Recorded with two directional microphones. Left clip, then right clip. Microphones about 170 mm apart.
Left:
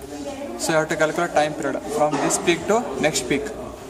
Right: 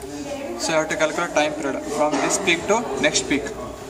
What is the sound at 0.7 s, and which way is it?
Speech, 65° left (ahead or behind).